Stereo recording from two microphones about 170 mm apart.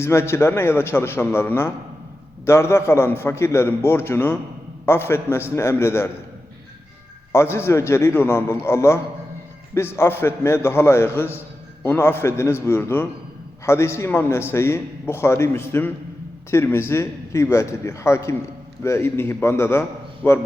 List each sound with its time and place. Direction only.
0.0 s a man's voice: 15° left (ahead or behind)
7.3 s a man's voice: 15° left (ahead or behind)